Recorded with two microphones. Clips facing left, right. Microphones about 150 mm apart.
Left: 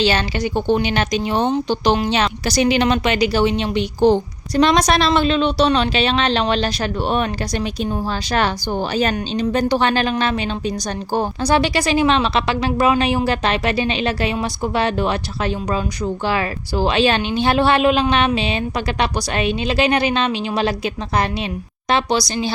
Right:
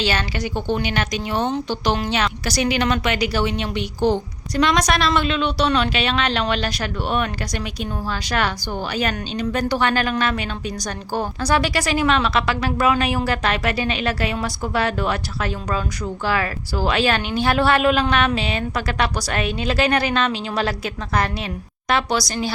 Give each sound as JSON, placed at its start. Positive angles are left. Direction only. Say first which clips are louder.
{"t": 0.0, "sound": "a woman's voice", "louder": "left 4 dB", "side_deg": 25}